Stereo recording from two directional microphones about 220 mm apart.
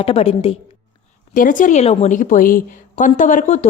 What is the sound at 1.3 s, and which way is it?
A woman's voice, 35° left (ahead or behind).